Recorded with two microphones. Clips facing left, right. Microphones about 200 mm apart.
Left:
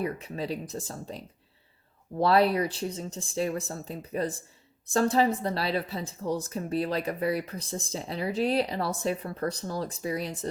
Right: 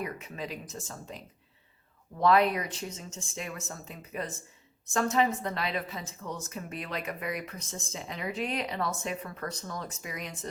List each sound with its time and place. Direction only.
0.0 s a woman's voice: 35° left (ahead or behind)